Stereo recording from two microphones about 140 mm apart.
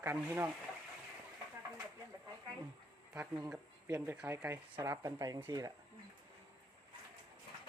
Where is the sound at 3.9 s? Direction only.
20° right (ahead or behind).